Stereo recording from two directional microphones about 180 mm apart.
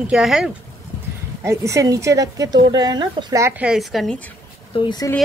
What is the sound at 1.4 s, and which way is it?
Speech, 15° right (ahead or behind).